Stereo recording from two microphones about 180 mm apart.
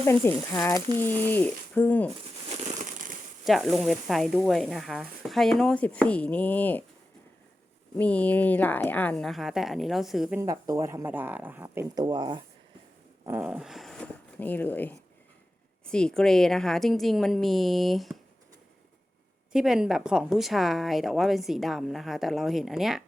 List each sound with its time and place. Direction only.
0.0 s speech: 10° left (ahead or behind)
3.4 s a woman's voice: centre (ahead or behind)
7.9 s a woman's voice: 10° left (ahead or behind)
10.4 s speech: 20° right (ahead or behind)
12.0 s speech: 25° right (ahead or behind)
13.2 s a woman's voice: 10° right (ahead or behind)
19.5 s a woman's voice: 5° right (ahead or behind)